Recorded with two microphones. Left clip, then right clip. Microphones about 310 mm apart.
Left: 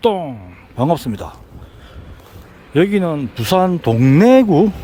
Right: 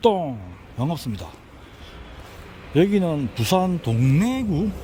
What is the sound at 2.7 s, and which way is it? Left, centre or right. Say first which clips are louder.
Speech: left 5 dB; centre.